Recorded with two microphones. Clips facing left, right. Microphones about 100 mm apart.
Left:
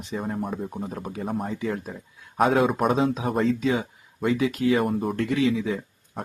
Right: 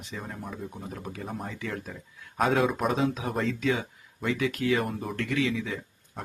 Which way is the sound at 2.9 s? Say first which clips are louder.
Left 4 dB; 30° left (ahead or behind).